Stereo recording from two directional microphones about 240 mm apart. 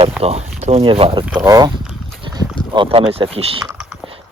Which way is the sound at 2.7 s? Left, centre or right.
Right.